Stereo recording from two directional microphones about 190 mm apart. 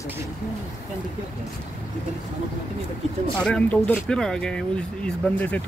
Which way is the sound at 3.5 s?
5° left (ahead or behind).